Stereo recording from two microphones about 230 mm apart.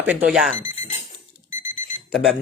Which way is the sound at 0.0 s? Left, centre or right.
Centre.